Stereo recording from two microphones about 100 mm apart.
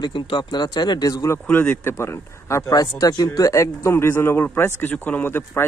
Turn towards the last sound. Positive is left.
turn(degrees=20)  # may be behind; listen again after turning